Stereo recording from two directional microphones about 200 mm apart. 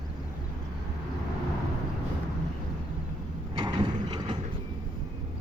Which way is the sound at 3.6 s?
20° right (ahead or behind).